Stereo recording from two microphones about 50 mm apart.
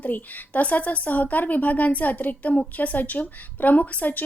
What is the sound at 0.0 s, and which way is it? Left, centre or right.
Speech, left.